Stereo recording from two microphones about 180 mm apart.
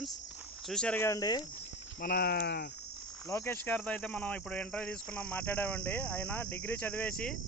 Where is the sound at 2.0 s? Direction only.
60° left (ahead or behind).